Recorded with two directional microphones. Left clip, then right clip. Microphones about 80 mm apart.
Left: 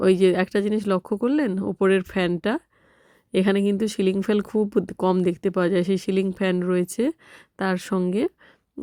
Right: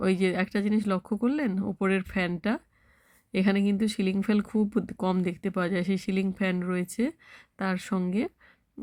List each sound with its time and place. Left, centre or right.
0.0 s speech: left
3.3 s speech: left
8.1 s a sound: left